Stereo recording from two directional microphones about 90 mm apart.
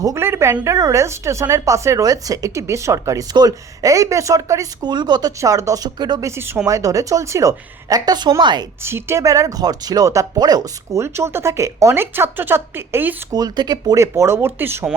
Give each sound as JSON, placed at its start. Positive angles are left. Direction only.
{"t": 0.2, "sound": "speech", "side_deg": -30}
{"t": 4.8, "sound": "speech", "side_deg": -55}
{"t": 5.4, "sound": "speech", "side_deg": -35}
{"t": 6.2, "sound": "a woman's voice", "side_deg": -30}
{"t": 8.8, "sound": "speech", "side_deg": -25}
{"t": 11.0, "sound": "speech", "side_deg": -30}
{"t": 13.3, "sound": "speech", "side_deg": -50}
{"t": 14.0, "sound": "speech", "side_deg": -30}